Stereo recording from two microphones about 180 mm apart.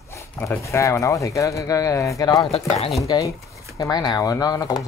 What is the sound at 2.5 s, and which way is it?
Speech, 35° left (ahead or behind).